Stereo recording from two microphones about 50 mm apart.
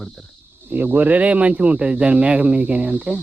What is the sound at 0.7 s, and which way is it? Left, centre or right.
Speech, right.